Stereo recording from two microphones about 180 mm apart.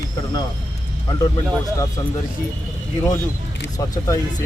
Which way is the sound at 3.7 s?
20° left (ahead or behind).